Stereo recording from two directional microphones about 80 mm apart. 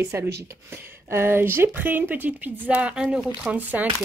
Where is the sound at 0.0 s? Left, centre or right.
Right.